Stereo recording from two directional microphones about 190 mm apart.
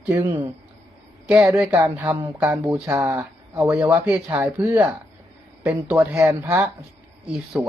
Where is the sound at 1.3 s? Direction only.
10° right (ahead or behind).